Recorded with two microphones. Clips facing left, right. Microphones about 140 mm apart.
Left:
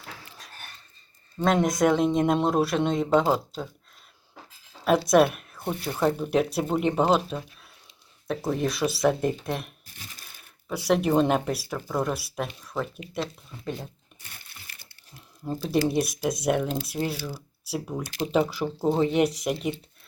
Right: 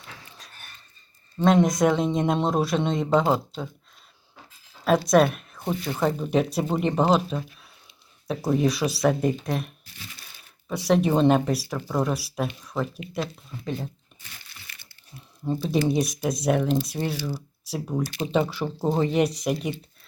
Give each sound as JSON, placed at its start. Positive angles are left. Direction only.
{"t": 1.4, "sound": "speech", "side_deg": 0}
{"t": 4.9, "sound": "speech", "side_deg": 0}
{"t": 9.8, "sound": "crumpling", "side_deg": 45}
{"t": 10.7, "sound": "speech", "side_deg": 0}
{"t": 15.4, "sound": "speech", "side_deg": 0}